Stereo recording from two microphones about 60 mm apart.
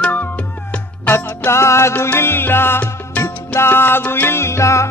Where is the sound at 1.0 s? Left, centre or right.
Left.